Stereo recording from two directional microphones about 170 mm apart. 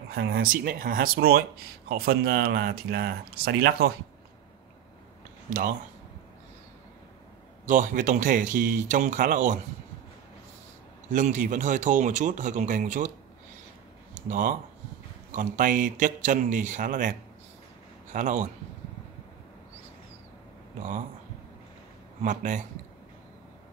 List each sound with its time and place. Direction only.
0.1 s speech: 65° right (ahead or behind)
5.5 s speech: 50° right (ahead or behind)
7.6 s speech: 50° right (ahead or behind)
11.1 s speech: 50° right (ahead or behind)
14.2 s speech: 50° right (ahead or behind)
18.1 s speech: 50° right (ahead or behind)
22.2 s speech: 50° right (ahead or behind)